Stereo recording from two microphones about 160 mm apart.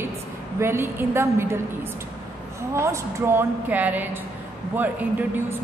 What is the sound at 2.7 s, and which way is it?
A woman's voice, 20° right (ahead or behind).